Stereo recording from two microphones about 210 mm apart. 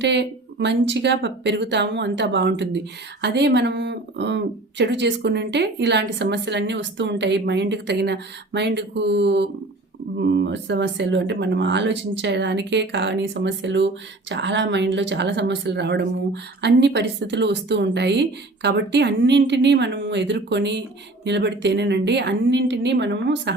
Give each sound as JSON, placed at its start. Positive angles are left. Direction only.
{"t": 0.0, "sound": "speech", "side_deg": -55}